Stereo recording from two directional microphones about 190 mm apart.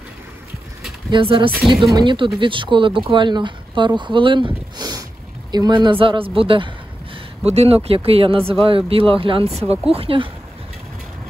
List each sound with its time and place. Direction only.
1.1 s speech: 25° right (ahead or behind)
4.7 s a sound: 20° right (ahead or behind)
5.5 s speech: 25° right (ahead or behind)